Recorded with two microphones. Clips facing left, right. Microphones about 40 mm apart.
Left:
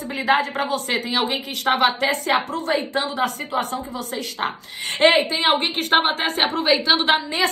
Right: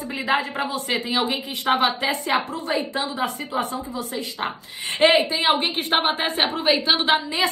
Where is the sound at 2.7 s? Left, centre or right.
Left.